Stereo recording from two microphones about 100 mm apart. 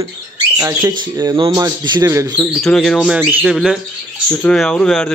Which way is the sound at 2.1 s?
30° right (ahead or behind).